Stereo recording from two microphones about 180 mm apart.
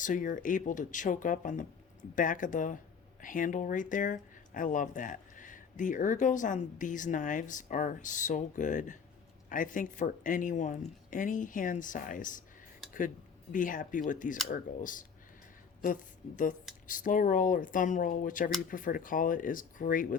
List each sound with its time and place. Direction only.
0.0 s speech: 45° left (ahead or behind)
13.5 s speech: 45° left (ahead or behind)